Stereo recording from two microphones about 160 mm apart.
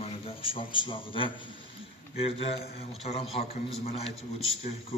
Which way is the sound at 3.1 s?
40° left (ahead or behind).